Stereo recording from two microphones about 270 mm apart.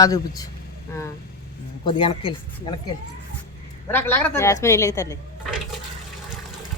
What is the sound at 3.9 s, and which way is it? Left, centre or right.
A woman's voice, centre.